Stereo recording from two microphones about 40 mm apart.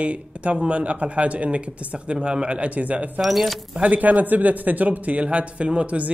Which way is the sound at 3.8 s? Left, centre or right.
Right.